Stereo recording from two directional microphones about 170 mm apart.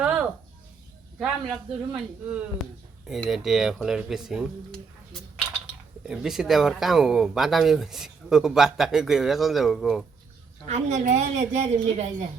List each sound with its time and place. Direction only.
0.0 s a sound: 10° right (ahead or behind)
1.2 s speech: centre (ahead or behind)
10.7 s a woman's voice: 40° right (ahead or behind)